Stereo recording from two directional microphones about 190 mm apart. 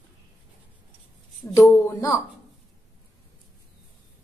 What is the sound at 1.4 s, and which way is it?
Speech, 20° left (ahead or behind).